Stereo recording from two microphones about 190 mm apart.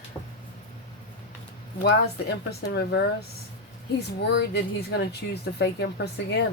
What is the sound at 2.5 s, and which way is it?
Speech, 60° left (ahead or behind).